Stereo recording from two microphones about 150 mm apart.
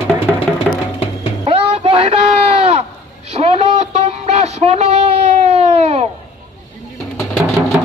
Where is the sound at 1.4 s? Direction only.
40° right (ahead or behind).